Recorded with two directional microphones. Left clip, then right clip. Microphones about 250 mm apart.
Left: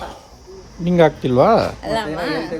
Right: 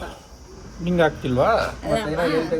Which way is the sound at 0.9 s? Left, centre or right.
Left.